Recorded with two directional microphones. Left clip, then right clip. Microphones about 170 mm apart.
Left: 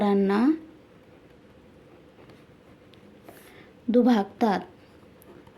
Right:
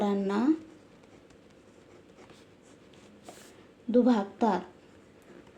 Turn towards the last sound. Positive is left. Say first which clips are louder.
# left 3 dB
turn(degrees=45)  # may be behind; listen again after turning